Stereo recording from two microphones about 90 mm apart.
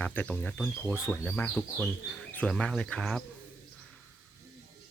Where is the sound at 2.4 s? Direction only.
5° left (ahead or behind).